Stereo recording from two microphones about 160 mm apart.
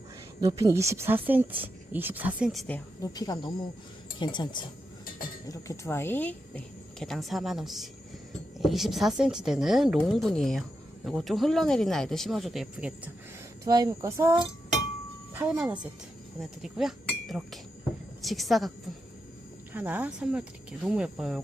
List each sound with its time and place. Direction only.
0.4 s speech: 20° right (ahead or behind); by 2.7 s centre (ahead or behind)
2.7 s speech: 20° left (ahead or behind)
5.5 s a woman's voice: 20° left (ahead or behind); by 12.9 s centre (ahead or behind)
13.7 s speech: 25° right (ahead or behind)
15.3 s a woman's voice: 5° right (ahead or behind)
19.7 s a woman's voice: 10° right (ahead or behind)